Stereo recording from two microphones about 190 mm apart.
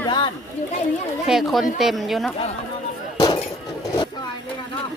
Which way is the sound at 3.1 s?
30° left (ahead or behind).